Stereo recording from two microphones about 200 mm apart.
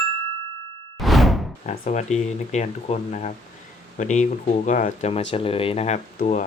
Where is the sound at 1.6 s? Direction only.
35° left (ahead or behind).